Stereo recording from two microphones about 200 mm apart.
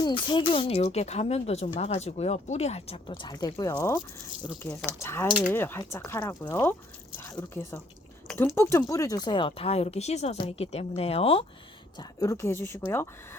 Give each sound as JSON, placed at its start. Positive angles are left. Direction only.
{"t": 0.0, "sound": "a woman's voice", "side_deg": 25}
{"t": 11.9, "sound": "a woman's voice", "side_deg": 15}